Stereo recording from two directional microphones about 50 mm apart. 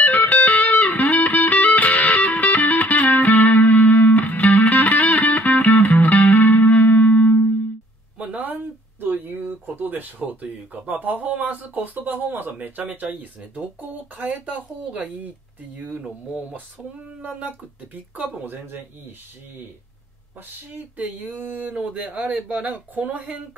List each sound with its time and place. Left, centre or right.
0.0 s music: left
8.2 s speech: right
17.3 s speech: right
18.4 s speech: right
21.5 s speech: right